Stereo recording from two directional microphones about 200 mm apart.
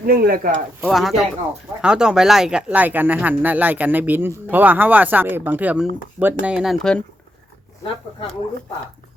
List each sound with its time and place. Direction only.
0.0 s speech: 45° right (ahead or behind)
0.9 s speech: centre (ahead or behind)